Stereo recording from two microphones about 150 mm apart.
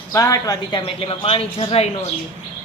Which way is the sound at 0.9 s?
35° left (ahead or behind).